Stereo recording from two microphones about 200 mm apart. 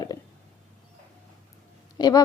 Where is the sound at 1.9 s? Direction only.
20° left (ahead or behind).